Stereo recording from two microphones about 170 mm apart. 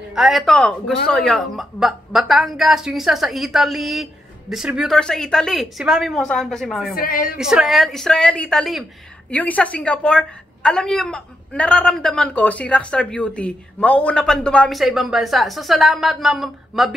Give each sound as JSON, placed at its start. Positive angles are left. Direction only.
{"t": 0.1, "sound": "a woman's voice", "side_deg": 0}
{"t": 7.0, "sound": "a woman's voice", "side_deg": 55}
{"t": 7.3, "sound": "a woman's voice", "side_deg": -5}